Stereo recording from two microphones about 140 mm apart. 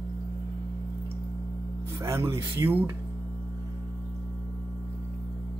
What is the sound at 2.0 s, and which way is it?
Speech, 20° right (ahead or behind).